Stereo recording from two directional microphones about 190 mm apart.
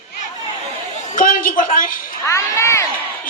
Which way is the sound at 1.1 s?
45° left (ahead or behind).